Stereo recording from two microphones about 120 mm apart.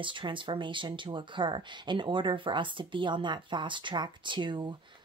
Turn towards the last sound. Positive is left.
turn(degrees=-40)  # may be behind; listen again after turning